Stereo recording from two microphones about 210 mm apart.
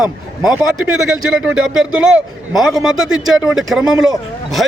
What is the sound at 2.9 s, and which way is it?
Speech, 70° right (ahead or behind).